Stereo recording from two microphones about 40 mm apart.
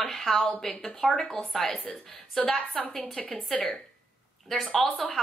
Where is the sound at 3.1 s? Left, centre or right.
Left.